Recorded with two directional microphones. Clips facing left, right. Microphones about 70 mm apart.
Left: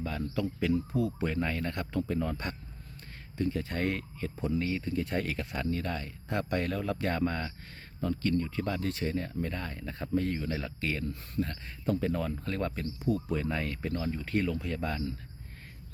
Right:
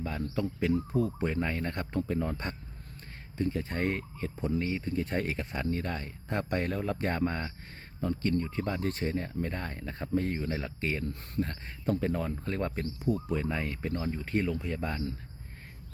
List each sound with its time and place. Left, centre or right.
0.0 s speech: right
3.6 s speech: right
11.1 s speech: right
11.4 s speech: right
13.4 s speech: centre